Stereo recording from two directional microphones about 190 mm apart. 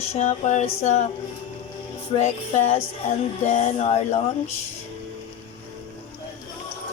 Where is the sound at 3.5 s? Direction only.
40° left (ahead or behind).